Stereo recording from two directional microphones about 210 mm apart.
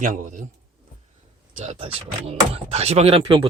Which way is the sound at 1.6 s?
30° right (ahead or behind).